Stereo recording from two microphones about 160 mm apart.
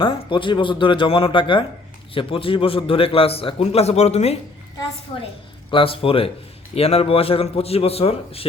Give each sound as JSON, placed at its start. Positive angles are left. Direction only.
{"t": 0.0, "sound": "a man's voice", "side_deg": 30}
{"t": 5.7, "sound": "a man's voice", "side_deg": 35}